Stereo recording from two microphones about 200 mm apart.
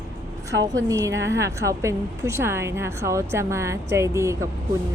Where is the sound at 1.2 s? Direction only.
60° right (ahead or behind).